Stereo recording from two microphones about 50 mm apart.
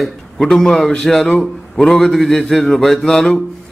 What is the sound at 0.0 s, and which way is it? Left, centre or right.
Speech, centre.